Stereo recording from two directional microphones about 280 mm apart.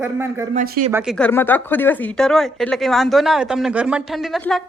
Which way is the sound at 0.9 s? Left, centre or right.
Centre.